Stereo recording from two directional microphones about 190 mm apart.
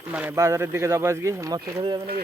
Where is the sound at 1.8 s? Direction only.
25° right (ahead or behind).